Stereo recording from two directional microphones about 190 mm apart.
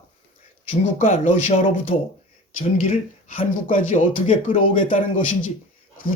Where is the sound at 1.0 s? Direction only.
45° left (ahead or behind).